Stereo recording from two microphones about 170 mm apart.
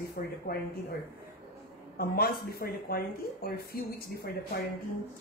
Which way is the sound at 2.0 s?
60° left (ahead or behind).